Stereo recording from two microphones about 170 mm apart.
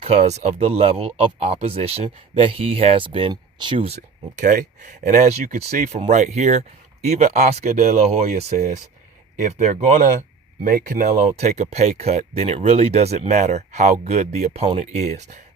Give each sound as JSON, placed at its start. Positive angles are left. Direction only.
{"t": 0.0, "sound": "speech", "side_deg": -40}